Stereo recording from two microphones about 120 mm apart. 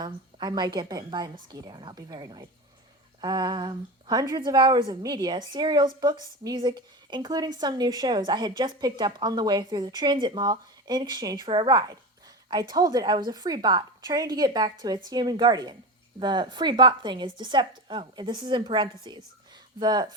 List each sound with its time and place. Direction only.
0.0 s a woman's voice: 35° right (ahead or behind)